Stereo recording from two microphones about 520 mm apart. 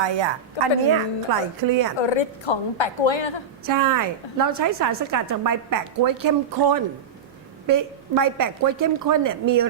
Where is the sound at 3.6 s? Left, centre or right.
Right.